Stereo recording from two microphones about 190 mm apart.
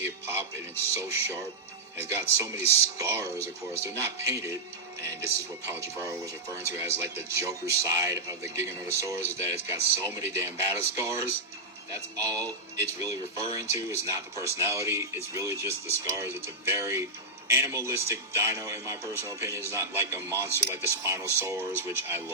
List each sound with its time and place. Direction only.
0.0 s music: 15° right (ahead or behind)
2.0 s speech: 15° right (ahead or behind)